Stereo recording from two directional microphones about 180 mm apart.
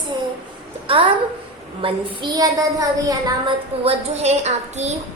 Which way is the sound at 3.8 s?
35° right (ahead or behind).